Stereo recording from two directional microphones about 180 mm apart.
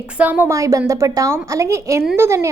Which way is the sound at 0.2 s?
10° right (ahead or behind).